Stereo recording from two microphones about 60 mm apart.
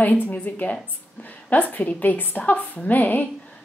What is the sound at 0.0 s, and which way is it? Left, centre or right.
A woman's voice, left.